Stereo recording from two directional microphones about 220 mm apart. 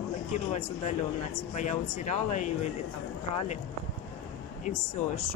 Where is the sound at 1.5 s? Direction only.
35° left (ahead or behind).